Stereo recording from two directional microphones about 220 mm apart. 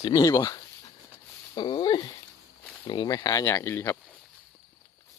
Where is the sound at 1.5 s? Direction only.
20° left (ahead or behind).